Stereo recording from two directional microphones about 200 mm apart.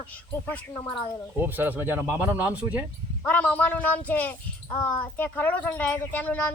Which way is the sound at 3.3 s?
5° left (ahead or behind).